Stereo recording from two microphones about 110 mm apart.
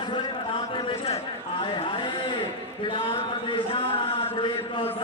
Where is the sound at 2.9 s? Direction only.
50° left (ahead or behind).